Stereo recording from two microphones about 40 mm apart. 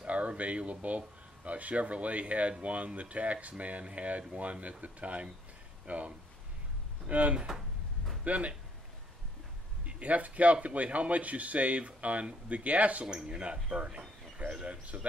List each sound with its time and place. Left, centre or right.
0.0 s a man's voice: right
9.8 s a man's voice: right
13.0 s speech: right